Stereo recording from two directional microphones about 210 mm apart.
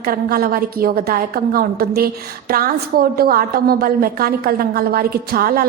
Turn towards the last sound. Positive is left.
turn(degrees=-45)  # may be behind; listen again after turning